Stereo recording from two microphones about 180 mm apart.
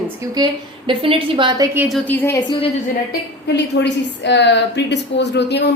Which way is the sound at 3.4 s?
70° left (ahead or behind).